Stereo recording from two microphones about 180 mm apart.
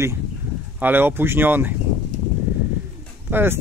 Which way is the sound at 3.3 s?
10° right (ahead or behind).